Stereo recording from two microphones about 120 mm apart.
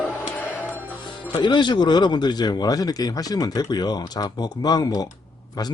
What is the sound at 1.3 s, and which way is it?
Speech, 40° left (ahead or behind).